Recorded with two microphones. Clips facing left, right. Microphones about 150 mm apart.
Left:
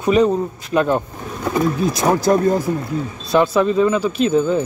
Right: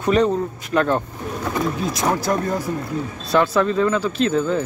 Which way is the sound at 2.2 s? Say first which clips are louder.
Left 6 dB; 25° left (ahead or behind).